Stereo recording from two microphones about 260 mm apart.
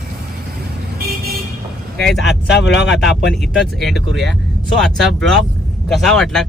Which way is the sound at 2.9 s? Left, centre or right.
Centre.